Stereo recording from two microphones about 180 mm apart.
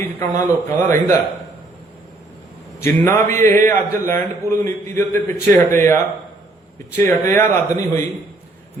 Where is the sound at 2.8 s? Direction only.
15° left (ahead or behind).